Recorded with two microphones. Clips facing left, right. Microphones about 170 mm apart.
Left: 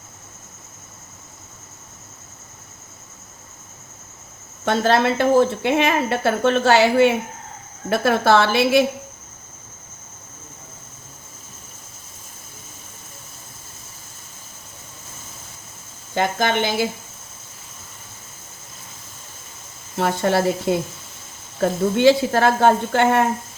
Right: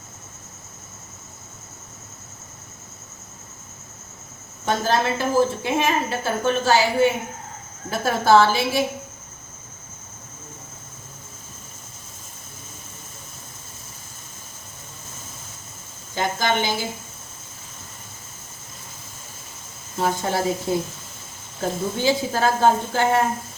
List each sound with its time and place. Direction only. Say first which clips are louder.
4.6 s a woman's voice: left 4 dB; 65° left (ahead or behind)
16.1 s speech: left 3 dB; 60° left (ahead or behind)
20.0 s a woman's voice: left 4 dB; 65° left (ahead or behind)